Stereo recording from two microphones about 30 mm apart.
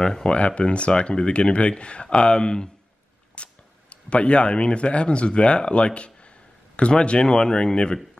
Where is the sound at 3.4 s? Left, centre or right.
Left.